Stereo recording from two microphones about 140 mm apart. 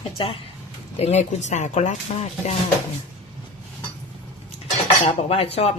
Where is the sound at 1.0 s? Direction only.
50° left (ahead or behind).